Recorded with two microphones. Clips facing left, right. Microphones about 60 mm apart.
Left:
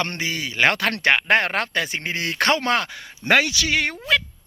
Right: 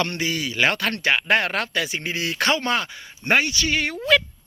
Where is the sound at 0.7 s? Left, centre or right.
Left.